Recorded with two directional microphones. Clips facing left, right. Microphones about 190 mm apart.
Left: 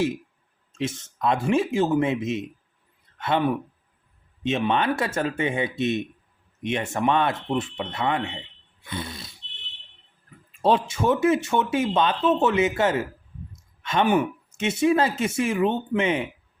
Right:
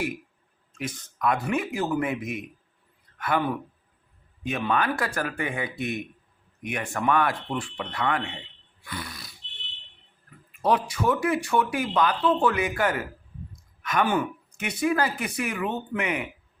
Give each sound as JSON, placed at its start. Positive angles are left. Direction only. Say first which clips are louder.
{"t": 0.7, "sound": "a man's voice", "louder": "left 6 dB", "side_deg": 25}
{"t": 10.5, "sound": "speech", "louder": "left 3 dB", "side_deg": 30}